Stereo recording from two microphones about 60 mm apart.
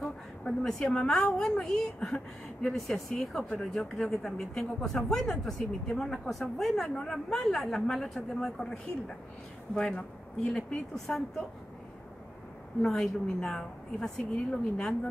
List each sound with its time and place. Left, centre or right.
0.4 s a woman's voice: centre
10.4 s speech: centre
12.8 s speech: centre